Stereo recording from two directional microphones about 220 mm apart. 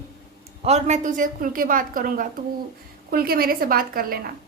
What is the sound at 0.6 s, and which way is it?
A woman's voice, 30° right (ahead or behind).